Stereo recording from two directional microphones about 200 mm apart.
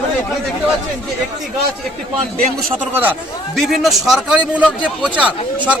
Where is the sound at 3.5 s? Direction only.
Centre (ahead or behind).